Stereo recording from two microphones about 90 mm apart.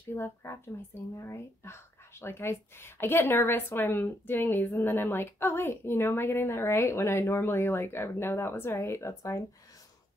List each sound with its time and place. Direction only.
0.1 s speech: 30° left (ahead or behind)